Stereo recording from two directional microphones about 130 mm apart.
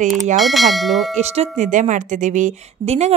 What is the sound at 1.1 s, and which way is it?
Speech, 55° right (ahead or behind).